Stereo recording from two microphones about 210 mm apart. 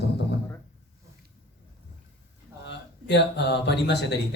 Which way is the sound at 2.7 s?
55° left (ahead or behind).